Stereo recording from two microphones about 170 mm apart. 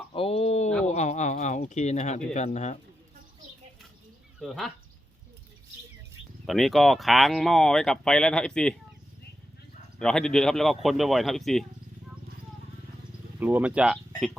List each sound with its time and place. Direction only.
0.1 s a sound: 35° left (ahead or behind)
0.9 s speech: 45° left (ahead or behind)
4.4 s speech: centre (ahead or behind)
6.4 s speech: centre (ahead or behind)
10.0 s speech: 5° left (ahead or behind)
13.4 s speech: 10° right (ahead or behind)